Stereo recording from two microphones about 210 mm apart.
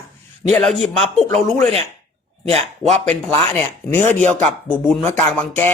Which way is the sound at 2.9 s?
5° left (ahead or behind).